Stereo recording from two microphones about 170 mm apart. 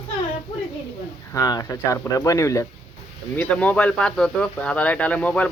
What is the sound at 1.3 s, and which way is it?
Speech, 20° left (ahead or behind).